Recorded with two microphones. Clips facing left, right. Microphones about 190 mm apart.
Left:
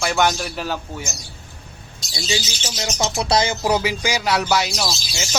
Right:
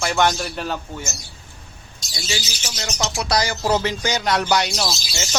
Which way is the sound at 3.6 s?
10° left (ahead or behind).